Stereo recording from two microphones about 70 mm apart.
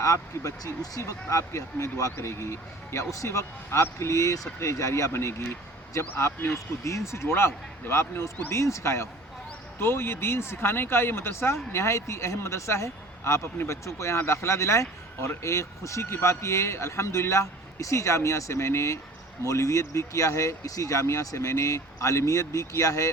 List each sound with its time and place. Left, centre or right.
0.0 s speech: left